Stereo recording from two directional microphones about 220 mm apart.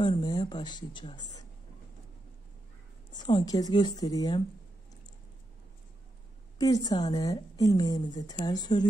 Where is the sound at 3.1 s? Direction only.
20° left (ahead or behind).